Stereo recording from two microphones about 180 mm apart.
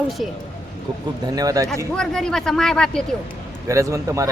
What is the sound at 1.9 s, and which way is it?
Speech, 5° left (ahead or behind).